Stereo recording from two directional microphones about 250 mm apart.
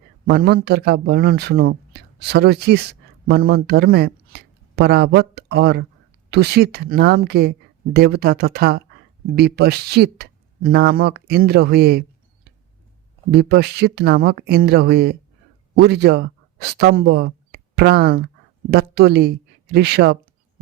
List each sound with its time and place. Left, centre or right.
0.3 s speech: right
13.3 s speech: right